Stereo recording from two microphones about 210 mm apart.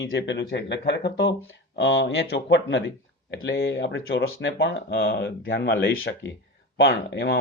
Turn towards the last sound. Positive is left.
turn(degrees=60)  # may be behind; listen again after turning